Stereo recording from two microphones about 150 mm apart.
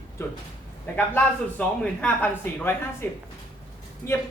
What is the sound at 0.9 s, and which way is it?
Speech, 10° left (ahead or behind).